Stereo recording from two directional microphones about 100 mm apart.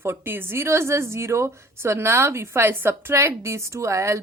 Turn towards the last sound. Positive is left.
turn(degrees=-30)  # may be behind; listen again after turning